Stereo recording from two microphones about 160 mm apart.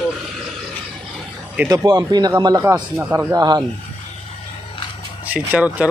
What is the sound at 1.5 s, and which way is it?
Speech, 20° right (ahead or behind).